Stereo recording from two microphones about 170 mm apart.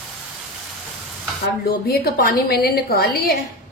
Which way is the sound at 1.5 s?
65° left (ahead or behind).